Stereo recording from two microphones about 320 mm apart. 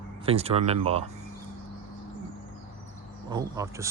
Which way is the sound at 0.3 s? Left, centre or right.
Centre.